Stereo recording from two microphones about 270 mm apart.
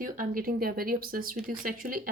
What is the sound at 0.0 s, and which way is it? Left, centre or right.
Speech, right.